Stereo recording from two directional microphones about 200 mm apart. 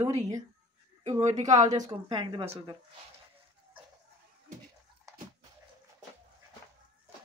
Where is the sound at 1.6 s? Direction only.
20° right (ahead or behind).